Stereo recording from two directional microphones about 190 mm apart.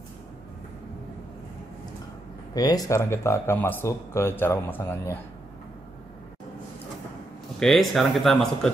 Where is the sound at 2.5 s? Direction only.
20° left (ahead or behind).